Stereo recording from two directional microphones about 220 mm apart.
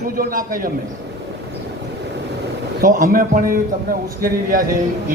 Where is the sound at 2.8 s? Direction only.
40° right (ahead or behind).